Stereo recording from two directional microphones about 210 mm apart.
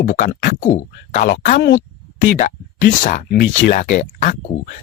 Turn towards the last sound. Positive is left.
turn(degrees=35)  # may be behind; listen again after turning